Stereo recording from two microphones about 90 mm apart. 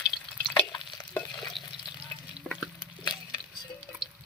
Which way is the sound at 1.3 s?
50° left (ahead or behind).